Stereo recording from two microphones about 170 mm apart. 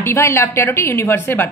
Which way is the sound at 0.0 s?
15° left (ahead or behind).